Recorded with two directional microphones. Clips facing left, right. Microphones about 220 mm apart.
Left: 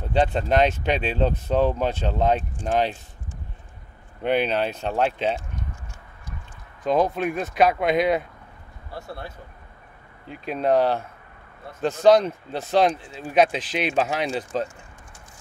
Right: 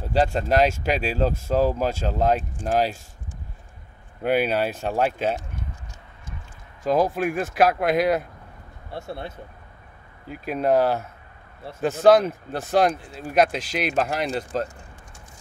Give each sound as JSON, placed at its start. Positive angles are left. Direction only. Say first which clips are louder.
{"t": 0.0, "sound": "speech", "louder": "even", "side_deg": -5}
{"t": 4.2, "sound": "speech", "louder": "right 1 dB", "side_deg": -5}
{"t": 6.9, "sound": "speech", "louder": "even", "side_deg": -5}
{"t": 8.9, "sound": "speech", "louder": "right 3 dB", "side_deg": -25}
{"t": 10.2, "sound": "speech", "louder": "right 1 dB", "side_deg": -5}